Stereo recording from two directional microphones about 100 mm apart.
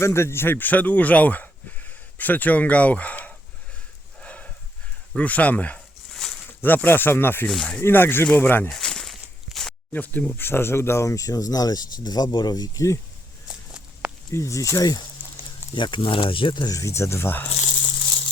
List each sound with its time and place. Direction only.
0.0 s speech: 25° left (ahead or behind)
4.2 s horse: 10° left (ahead or behind)
5.1 s speech: 15° left (ahead or behind)
7.4 s speech: 10° left (ahead or behind)
7.8 s speech: 20° left (ahead or behind)
8.7 s a sound: 5° left (ahead or behind)
9.9 s speech: 15° left (ahead or behind); by 13.0 s 35° left (ahead or behind)
13.5 s a sound: 10° right (ahead or behind)
14.3 s speech: 30° left (ahead or behind)
15.7 s speech: 55° left (ahead or behind)
16.6 s speech: 35° left (ahead or behind)